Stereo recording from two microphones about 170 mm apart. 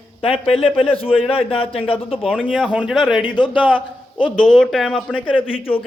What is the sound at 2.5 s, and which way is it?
Speech, centre (ahead or behind).